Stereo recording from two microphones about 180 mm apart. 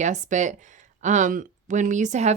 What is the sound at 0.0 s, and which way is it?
Speech, 40° right (ahead or behind).